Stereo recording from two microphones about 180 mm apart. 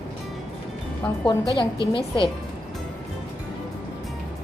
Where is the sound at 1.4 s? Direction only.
20° right (ahead or behind).